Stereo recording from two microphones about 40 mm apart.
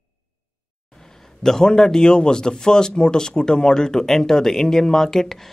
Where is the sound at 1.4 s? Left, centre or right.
Centre.